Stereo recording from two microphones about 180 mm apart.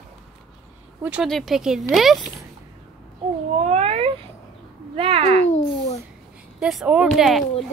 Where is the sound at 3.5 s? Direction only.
40° right (ahead or behind).